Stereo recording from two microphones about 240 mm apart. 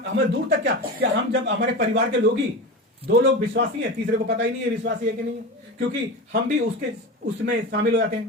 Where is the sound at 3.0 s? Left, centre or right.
Right.